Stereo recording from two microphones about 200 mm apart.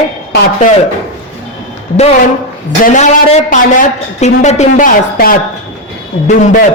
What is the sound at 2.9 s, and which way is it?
A man's voice, 35° left (ahead or behind).